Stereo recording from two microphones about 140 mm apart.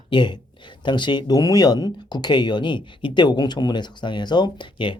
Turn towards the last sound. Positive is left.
turn(degrees=35)  # may be behind; listen again after turning